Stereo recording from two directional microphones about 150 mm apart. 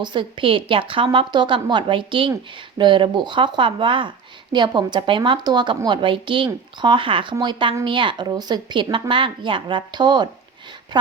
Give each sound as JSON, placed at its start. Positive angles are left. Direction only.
{"t": 0.0, "sound": "a woman's voice", "side_deg": -30}